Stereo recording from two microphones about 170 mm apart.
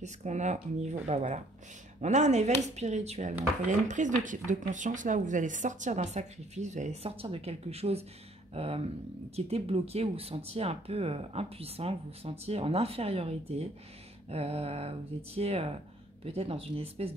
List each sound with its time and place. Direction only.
0.0 s speech: 45° right (ahead or behind)